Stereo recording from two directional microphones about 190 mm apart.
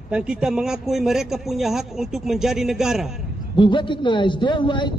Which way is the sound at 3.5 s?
25° left (ahead or behind).